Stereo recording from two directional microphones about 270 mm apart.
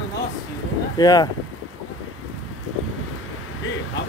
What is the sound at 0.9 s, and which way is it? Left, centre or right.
Speech, centre.